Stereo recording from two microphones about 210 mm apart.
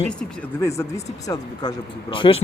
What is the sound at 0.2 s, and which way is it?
Speech, 15° left (ahead or behind).